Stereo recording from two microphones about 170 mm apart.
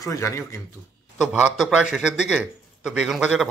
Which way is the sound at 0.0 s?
20° left (ahead or behind).